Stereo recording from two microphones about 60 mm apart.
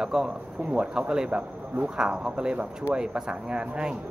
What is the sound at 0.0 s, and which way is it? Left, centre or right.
Speech, centre.